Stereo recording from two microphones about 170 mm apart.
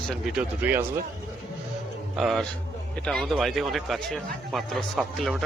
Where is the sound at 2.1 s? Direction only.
Centre (ahead or behind).